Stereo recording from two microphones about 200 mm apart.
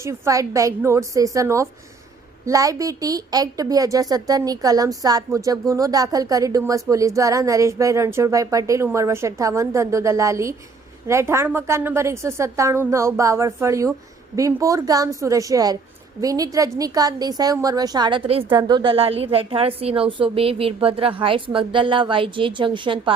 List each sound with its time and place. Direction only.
0.0 s a woman's voice: 15° right (ahead or behind)